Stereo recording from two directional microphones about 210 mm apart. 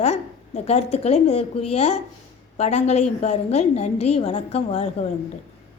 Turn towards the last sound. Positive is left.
turn(degrees=30)  # may be behind; listen again after turning